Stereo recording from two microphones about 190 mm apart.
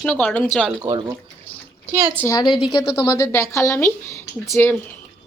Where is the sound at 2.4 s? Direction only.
25° left (ahead or behind).